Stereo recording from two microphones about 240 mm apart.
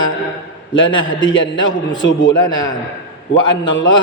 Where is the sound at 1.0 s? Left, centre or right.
Left.